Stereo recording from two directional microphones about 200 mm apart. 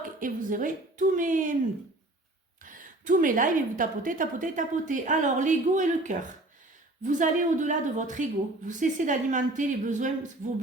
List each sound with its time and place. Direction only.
0.0 s a woman's voice: 40° right (ahead or behind)
2.6 s a woman's voice: 40° right (ahead or behind)